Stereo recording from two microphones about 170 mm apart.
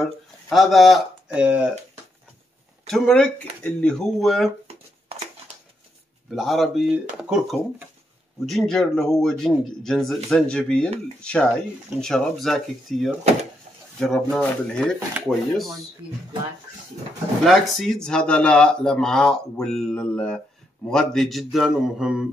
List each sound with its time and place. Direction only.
0.0 s speech: centre (ahead or behind)
2.9 s speech: 5° left (ahead or behind)
4.6 s a sound: 35° right (ahead or behind)
6.3 s speech: centre (ahead or behind)
17.5 s speech: centre (ahead or behind)